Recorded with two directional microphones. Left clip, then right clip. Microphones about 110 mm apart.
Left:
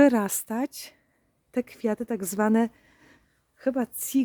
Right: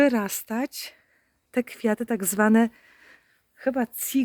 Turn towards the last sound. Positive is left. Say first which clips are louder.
# right 1 dB
turn(degrees=25)  # may be behind; listen again after turning